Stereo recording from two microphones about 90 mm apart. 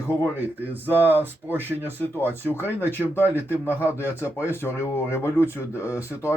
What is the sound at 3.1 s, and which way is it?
Speech, 25° left (ahead or behind).